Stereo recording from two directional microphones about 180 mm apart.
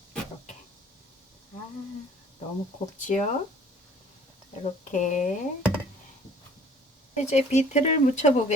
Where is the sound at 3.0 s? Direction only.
45° left (ahead or behind).